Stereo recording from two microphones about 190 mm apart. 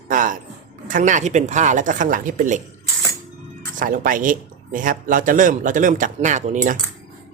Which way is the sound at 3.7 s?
45° right (ahead or behind).